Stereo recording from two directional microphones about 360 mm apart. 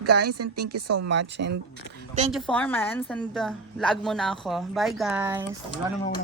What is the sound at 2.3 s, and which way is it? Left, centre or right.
A woman's voice, centre.